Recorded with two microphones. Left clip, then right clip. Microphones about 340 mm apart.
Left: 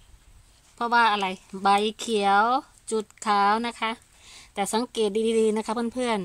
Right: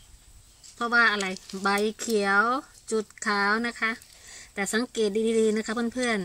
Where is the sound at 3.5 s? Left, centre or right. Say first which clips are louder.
Even; centre.